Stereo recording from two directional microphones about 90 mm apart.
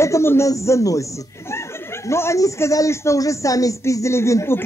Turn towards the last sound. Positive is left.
turn(degrees=30)  # may be behind; listen again after turning